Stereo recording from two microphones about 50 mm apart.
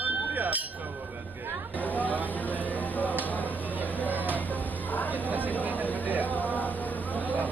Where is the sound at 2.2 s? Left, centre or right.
Left.